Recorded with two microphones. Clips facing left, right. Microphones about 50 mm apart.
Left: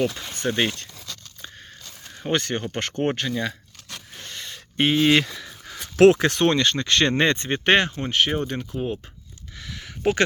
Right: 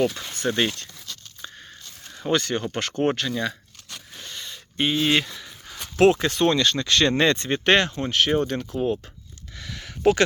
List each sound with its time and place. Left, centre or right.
0.4 s speech: centre
2.2 s speech: left
3.9 s a sound: left
6.0 s speech: left
6.5 s speech: left; by 9.0 s centre
9.6 s a sound: centre